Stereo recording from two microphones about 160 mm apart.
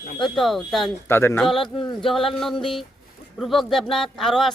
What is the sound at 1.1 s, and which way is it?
Speech, 15° left (ahead or behind).